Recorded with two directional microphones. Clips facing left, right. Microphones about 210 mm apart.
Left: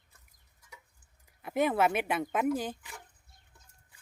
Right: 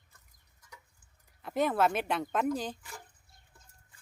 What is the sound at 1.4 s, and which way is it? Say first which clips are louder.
Speech: left 1 dB; 10° left (ahead or behind).